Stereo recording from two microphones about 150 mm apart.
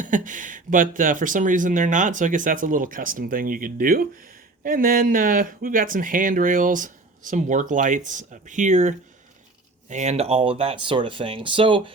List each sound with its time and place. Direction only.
0.0 s speech: 60° right (ahead or behind); by 11.9 s 35° right (ahead or behind)